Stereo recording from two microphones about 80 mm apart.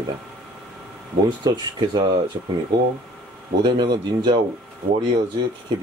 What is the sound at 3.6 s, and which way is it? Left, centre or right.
Speech, right.